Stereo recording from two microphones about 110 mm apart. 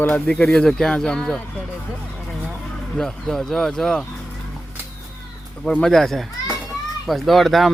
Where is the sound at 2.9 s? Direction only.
5° left (ahead or behind).